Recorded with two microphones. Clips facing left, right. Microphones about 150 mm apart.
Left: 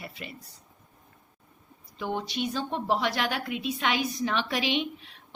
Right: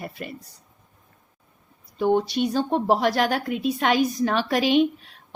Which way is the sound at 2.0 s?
45° right (ahead or behind).